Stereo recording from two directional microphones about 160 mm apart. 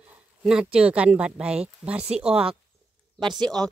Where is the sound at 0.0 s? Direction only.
5° right (ahead or behind).